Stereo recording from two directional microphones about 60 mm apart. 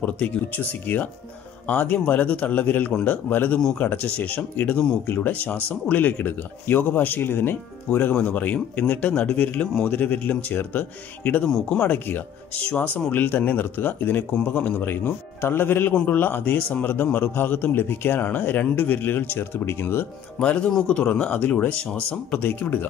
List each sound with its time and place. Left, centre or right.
0.5 s speech: left
11.4 s a man's voice: centre
11.9 s speech: left
20.3 s a man's voice: centre; by 22.8 s left